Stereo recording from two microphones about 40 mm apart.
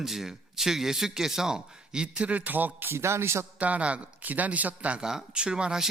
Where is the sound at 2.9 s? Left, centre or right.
Right.